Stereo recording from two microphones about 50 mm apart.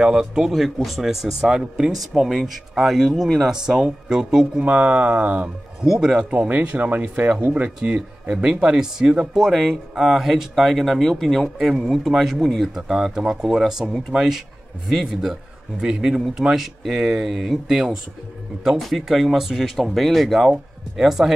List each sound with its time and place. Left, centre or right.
0.0 s speech: centre
0.5 s speech: centre
4.6 s speech: right
5.9 s speech: centre
9.3 s speech: centre
11.5 s speech: centre
12.7 s speech: centre
15.8 s speech: centre